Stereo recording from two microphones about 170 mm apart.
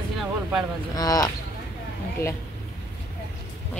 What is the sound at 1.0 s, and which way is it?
Speech, 20° left (ahead or behind).